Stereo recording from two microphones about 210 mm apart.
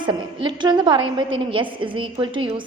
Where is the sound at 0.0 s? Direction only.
20° right (ahead or behind).